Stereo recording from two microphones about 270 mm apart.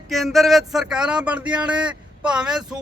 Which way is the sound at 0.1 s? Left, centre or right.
Centre.